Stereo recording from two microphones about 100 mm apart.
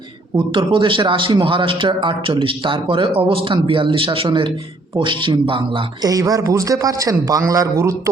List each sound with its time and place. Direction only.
0.3 s speech: 55° right (ahead or behind)
6.0 s a man's voice: 40° right (ahead or behind)